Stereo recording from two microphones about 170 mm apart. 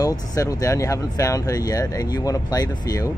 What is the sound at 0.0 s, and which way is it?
Speech, 20° left (ahead or behind).